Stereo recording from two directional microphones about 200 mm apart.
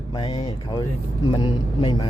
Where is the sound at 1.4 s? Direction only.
25° left (ahead or behind).